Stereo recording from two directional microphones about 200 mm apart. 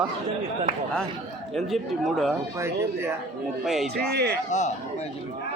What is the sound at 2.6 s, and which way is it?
Speech, 15° right (ahead or behind).